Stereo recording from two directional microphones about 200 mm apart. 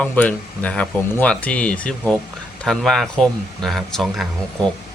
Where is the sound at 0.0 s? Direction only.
5° left (ahead or behind).